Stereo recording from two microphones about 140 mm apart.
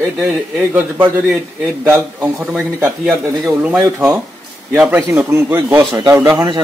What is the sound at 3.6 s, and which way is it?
A man's voice, 15° right (ahead or behind).